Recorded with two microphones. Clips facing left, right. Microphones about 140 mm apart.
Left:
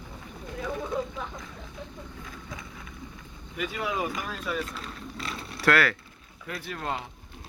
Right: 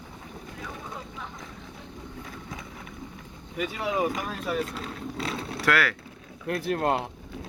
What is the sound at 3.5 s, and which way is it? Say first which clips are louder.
Speech: right 3 dB; 35° right (ahead or behind).